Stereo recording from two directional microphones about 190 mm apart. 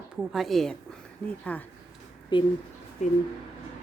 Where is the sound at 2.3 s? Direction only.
25° left (ahead or behind).